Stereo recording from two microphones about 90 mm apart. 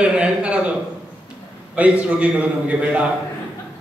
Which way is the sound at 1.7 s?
15° right (ahead or behind).